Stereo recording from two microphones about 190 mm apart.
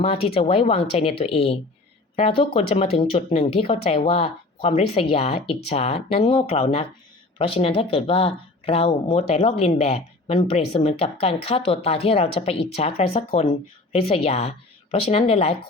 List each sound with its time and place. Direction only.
0.0 s speech: 30° left (ahead or behind)